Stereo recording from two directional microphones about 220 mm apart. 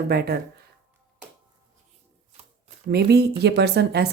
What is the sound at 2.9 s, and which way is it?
Speech, 50° right (ahead or behind).